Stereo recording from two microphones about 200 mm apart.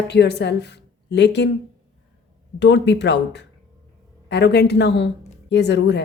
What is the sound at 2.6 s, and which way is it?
A woman's voice, 60° left (ahead or behind).